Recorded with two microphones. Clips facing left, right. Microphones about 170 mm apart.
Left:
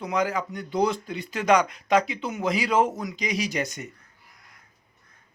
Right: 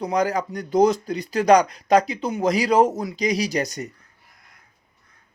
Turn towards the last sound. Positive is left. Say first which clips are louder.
# right 4 dB
turn(degrees=-35)  # may be behind; listen again after turning